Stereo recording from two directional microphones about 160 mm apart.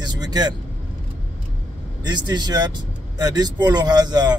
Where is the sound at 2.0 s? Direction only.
25° right (ahead or behind).